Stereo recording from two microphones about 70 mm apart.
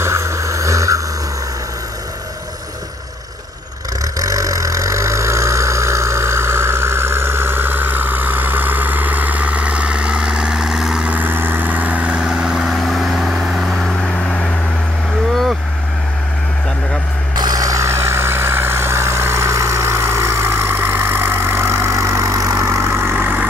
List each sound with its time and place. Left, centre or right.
0.0 s boat: right
4.0 s vehicle: right; by 11.1 s centre
11.1 s vehicle: right; by 14.5 s centre
17.4 s vehicle: right